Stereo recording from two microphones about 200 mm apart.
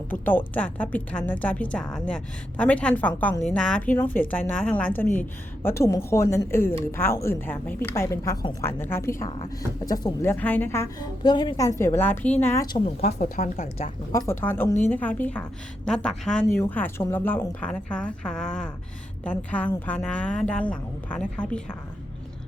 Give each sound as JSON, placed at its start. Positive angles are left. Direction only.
{"t": 0.1, "sound": "a woman's voice", "side_deg": 10}
{"t": 13.1, "sound": "a woman's voice", "side_deg": 40}
{"t": 14.1, "sound": "a woman's voice", "side_deg": 15}